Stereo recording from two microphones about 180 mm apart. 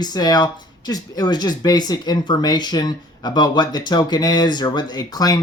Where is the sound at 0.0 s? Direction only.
20° left (ahead or behind).